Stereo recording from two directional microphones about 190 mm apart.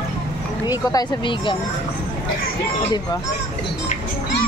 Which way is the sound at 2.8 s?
20° left (ahead or behind).